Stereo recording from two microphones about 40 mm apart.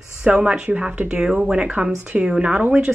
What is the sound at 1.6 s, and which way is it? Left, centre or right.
Speech, right.